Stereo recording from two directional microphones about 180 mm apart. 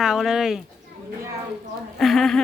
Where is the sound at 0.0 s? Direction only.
Centre (ahead or behind).